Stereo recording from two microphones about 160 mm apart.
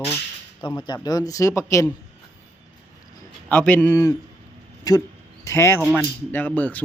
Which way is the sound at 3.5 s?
10° left (ahead or behind).